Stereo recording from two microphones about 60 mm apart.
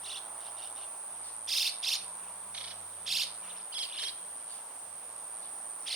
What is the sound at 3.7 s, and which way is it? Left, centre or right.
Bird vocalization, right.